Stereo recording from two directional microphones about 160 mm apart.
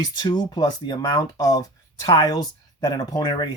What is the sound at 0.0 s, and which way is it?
Speech, 25° left (ahead or behind).